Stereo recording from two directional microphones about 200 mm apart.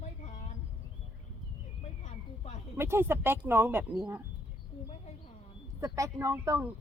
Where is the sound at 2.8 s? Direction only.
10° right (ahead or behind).